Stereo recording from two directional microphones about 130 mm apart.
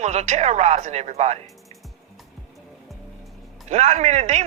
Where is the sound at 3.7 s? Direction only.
60° right (ahead or behind).